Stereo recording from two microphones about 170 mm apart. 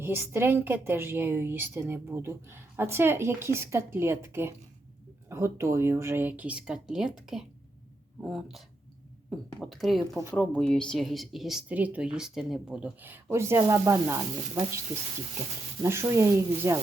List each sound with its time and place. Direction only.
0.0 s a woman's voice: 15° right (ahead or behind)
15.8 s a woman's voice: 15° right (ahead or behind)